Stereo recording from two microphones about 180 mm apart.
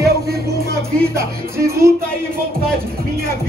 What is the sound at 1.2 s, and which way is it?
Music, 15° right (ahead or behind).